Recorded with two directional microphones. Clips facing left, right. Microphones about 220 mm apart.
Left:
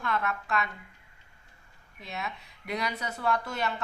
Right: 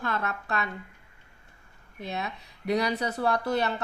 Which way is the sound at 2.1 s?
35° right (ahead or behind).